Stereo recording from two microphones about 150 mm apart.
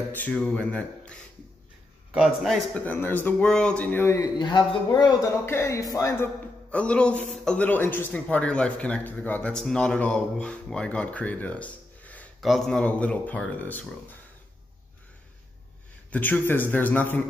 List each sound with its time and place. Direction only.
0.1 s a man's voice: 10° left (ahead or behind)
2.8 s a man's voice: 15° left (ahead or behind)
4.4 s a man's voice: 30° left (ahead or behind); by 14.1 s 10° left (ahead or behind)
16.1 s a man's voice: 10° left (ahead or behind)